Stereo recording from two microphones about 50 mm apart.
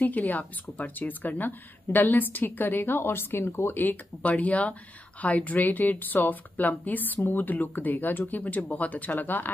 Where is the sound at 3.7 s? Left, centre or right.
Left.